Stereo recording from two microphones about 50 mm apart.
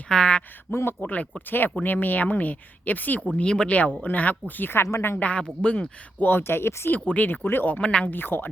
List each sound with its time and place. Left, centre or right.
0.1 s speech: centre
0.7 s speech: left
1.0 s speech: left
3.3 s speech: centre
3.7 s speech: left
5.2 s speech: left
6.1 s speech: left
7.7 s speech: left
8.0 s speech: left